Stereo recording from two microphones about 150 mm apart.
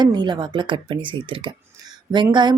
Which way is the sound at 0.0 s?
30° right (ahead or behind).